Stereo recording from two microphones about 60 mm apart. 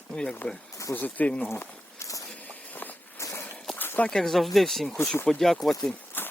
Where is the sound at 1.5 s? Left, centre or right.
Left.